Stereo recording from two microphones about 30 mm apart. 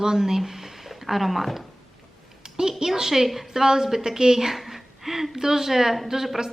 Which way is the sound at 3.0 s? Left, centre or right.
Centre.